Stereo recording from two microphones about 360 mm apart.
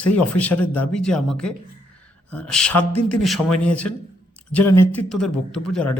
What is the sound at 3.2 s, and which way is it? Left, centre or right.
Speech, centre.